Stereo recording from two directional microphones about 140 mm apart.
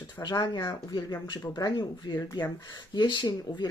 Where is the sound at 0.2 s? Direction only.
30° left (ahead or behind).